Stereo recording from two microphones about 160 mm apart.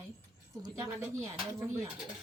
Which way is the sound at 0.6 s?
20° right (ahead or behind).